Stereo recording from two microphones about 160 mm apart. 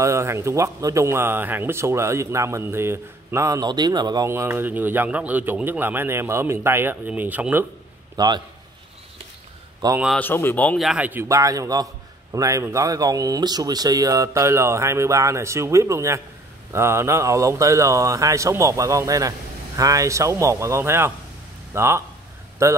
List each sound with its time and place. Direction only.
0.0 s speech: 15° right (ahead or behind)
8.2 s a man's voice: 25° right (ahead or behind)
9.8 s a man's voice: 25° right (ahead or behind)
10.1 s speech: 10° left (ahead or behind)
10.8 s a man's voice: 5° right (ahead or behind)